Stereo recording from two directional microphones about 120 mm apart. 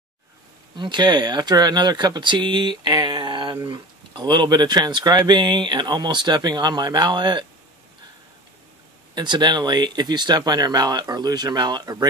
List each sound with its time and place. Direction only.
0.7 s speech: 40° right (ahead or behind)
9.1 s speech: 40° right (ahead or behind)